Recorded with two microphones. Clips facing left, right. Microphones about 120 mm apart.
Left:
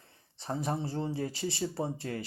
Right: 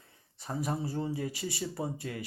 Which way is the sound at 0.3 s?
30° left (ahead or behind).